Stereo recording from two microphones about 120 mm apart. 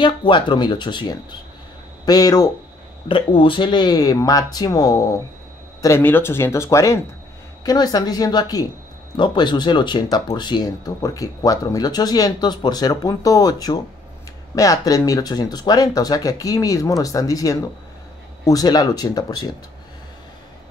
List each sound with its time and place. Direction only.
0.0 s speech: 40° left (ahead or behind)
3.1 s speech: 45° left (ahead or behind)